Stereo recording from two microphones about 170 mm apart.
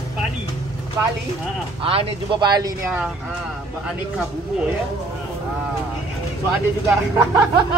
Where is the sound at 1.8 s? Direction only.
30° right (ahead or behind).